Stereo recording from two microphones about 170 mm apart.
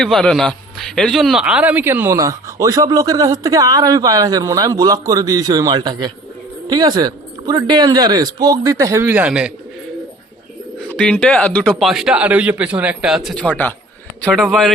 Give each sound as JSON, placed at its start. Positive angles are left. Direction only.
{"t": 0.0, "sound": "a man's voice", "side_deg": 5}
{"t": 10.9, "sound": "a man's voice", "side_deg": 5}
{"t": 14.3, "sound": "a man's voice", "side_deg": 0}